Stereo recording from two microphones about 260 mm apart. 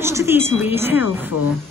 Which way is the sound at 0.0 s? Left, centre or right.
Centre.